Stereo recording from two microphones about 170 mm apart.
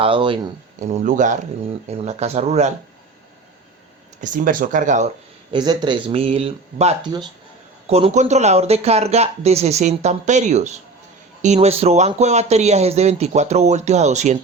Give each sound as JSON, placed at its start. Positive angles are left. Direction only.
{"t": 0.0, "sound": "speech", "side_deg": -30}
{"t": 0.8, "sound": "speech", "side_deg": -45}
{"t": 4.2, "sound": "speech", "side_deg": -50}
{"t": 5.5, "sound": "speech", "side_deg": -25}
{"t": 7.0, "sound": "speech", "side_deg": -25}
{"t": 7.9, "sound": "speech", "side_deg": -35}